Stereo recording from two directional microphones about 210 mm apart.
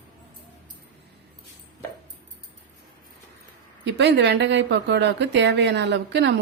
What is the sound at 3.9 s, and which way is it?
Speech, 55° right (ahead or behind).